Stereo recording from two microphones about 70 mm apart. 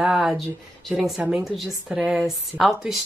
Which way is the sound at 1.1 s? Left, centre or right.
Centre.